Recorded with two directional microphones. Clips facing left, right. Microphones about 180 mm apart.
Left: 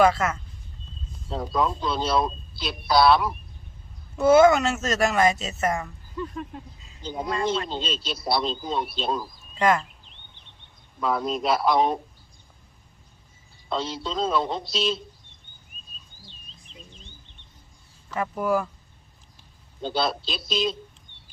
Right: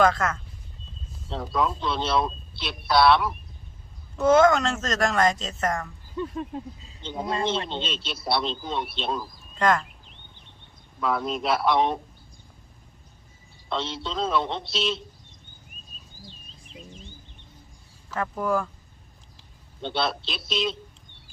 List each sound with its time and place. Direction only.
0.0 s a man's voice: 10° left (ahead or behind)
6.1 s a sound: 25° right (ahead or behind)
7.3 s speech: 25° right (ahead or behind)
7.7 s a man's voice: centre (ahead or behind)
11.0 s a man's voice: centre (ahead or behind)
13.7 s a man's voice: centre (ahead or behind)
16.7 s cricket: 5° right (ahead or behind)
18.1 s speech: 10° left (ahead or behind)
19.8 s a man's voice: centre (ahead or behind)